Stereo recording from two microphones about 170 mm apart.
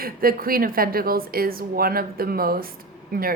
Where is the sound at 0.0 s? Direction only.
60° right (ahead or behind).